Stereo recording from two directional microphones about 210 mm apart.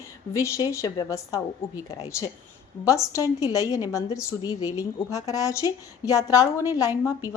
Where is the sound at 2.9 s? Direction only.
15° left (ahead or behind).